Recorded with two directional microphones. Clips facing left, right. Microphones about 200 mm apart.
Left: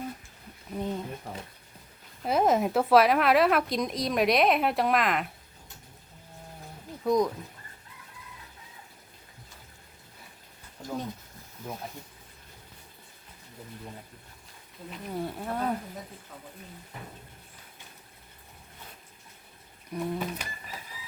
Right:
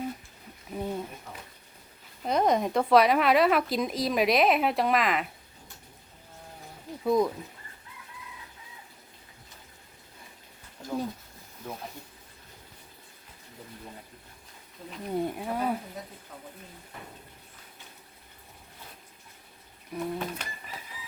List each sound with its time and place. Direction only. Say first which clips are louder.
0.7 s a sound: even; 10° right (ahead or behind)
1.3 s a sound: left 5 dB; 30° left (ahead or behind)
2.2 s a woman's voice: left 1 dB; 5° left (ahead or behind)
7.0 s a woman's voice: even; 5° right (ahead or behind)
15.1 s speech: right 3 dB; 20° right (ahead or behind)
19.9 s a woman's voice: left 1 dB; centre (ahead or behind)